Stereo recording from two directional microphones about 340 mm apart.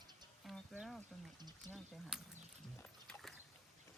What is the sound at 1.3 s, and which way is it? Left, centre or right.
Speech, centre.